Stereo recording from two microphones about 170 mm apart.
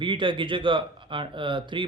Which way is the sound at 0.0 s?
30° right (ahead or behind).